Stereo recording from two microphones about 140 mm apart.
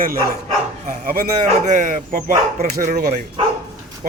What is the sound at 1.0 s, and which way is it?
Speech, 90° right.